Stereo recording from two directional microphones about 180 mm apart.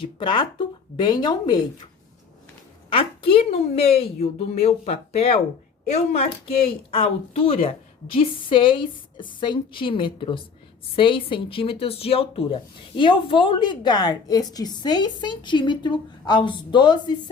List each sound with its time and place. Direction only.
0.0 s speech: 25° left (ahead or behind)
2.9 s a woman's voice: 30° left (ahead or behind)